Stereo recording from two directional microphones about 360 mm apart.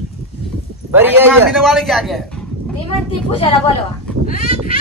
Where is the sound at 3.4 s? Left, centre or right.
Centre.